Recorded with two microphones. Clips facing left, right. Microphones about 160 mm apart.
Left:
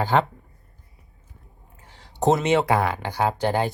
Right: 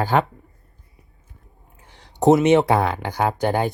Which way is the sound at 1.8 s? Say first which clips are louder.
Right 5 dB; 15° right (ahead or behind).